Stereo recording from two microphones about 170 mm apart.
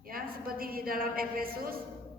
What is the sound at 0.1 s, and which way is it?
A woman's voice, 60° right (ahead or behind).